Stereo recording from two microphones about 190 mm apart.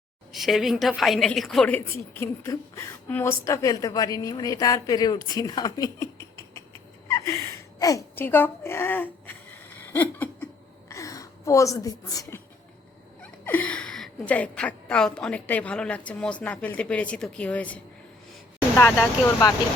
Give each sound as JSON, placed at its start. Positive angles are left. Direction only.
{"t": 0.3, "sound": "a woman's voice", "side_deg": 0}
{"t": 6.5, "sound": "a sound", "side_deg": 15}
{"t": 13.4, "sound": "a woman's voice", "side_deg": 10}
{"t": 18.8, "sound": "a woman's voice", "side_deg": 10}